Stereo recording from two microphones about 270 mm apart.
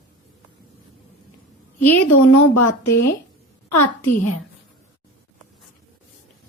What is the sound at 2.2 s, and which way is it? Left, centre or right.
Speech, left.